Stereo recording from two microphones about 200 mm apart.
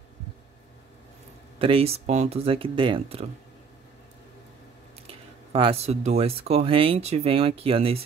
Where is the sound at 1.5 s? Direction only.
30° right (ahead or behind).